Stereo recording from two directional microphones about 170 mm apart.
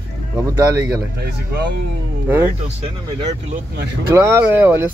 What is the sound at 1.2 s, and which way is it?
Speech, 75° right (ahead or behind).